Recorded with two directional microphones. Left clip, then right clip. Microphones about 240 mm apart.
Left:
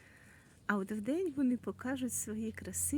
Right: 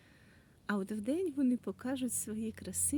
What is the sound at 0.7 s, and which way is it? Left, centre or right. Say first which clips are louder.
A woman's voice: left 1 dB; centre.